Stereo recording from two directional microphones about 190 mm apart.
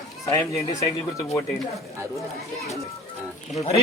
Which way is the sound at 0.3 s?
15° left (ahead or behind).